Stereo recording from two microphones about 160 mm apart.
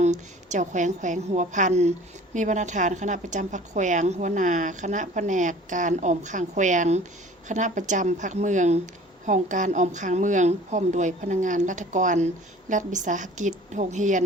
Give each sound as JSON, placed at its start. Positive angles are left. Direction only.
{"t": 0.0, "sound": "a woman's voice", "side_deg": -50}